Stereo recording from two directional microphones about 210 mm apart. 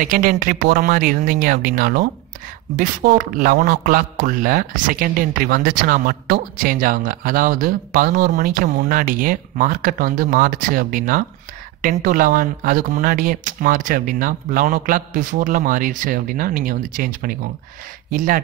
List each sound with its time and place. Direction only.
0.0 s a man's voice: 40° right (ahead or behind)